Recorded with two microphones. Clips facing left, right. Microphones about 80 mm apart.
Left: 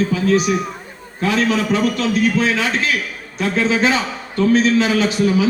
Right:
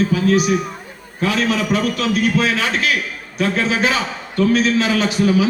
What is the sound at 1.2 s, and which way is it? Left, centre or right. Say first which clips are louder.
Speech: left 1 dB; left.